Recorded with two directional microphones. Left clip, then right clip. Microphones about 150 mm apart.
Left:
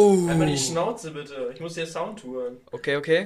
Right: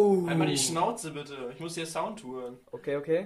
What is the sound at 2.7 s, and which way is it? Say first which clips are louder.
Speech: left 6 dB; 20° left (ahead or behind).